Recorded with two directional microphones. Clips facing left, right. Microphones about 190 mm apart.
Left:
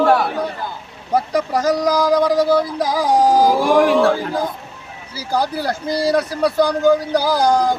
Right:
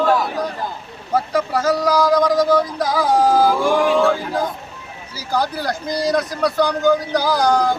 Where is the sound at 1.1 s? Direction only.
15° left (ahead or behind).